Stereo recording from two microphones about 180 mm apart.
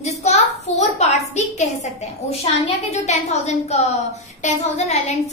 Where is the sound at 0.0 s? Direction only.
40° left (ahead or behind).